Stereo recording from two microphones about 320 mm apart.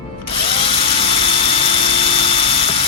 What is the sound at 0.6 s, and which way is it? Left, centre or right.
Helicopter, centre.